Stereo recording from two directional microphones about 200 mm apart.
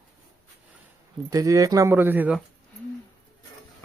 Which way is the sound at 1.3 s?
15° right (ahead or behind).